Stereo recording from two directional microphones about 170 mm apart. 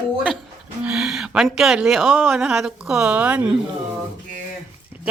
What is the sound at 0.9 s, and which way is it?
Speech, 5° right (ahead or behind).